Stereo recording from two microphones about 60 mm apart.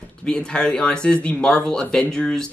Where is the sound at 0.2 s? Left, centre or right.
Centre.